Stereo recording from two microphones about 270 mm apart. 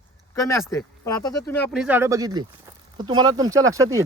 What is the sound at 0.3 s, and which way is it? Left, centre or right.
Speech, centre.